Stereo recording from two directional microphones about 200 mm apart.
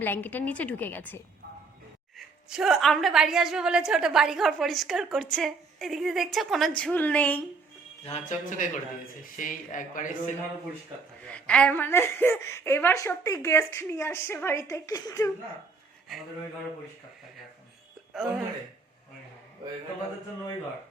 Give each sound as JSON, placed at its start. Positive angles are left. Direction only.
{"t": 0.0, "sound": "a woman's voice", "side_deg": 10}
{"t": 2.1, "sound": "a woman's voice", "side_deg": 0}
{"t": 8.3, "sound": "speech", "side_deg": 40}
{"t": 11.3, "sound": "a woman's voice", "side_deg": 5}
{"t": 18.1, "sound": "a woman's voice", "side_deg": 0}